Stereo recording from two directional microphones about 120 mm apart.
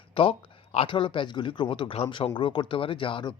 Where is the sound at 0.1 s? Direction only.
50° left (ahead or behind).